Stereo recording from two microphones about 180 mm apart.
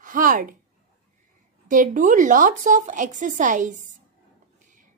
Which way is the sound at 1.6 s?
45° right (ahead or behind).